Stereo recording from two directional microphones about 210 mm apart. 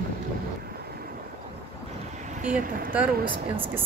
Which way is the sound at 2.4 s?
40° right (ahead or behind).